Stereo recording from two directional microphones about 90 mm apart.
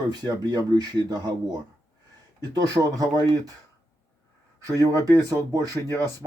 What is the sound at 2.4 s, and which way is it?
Speech, 45° right (ahead or behind).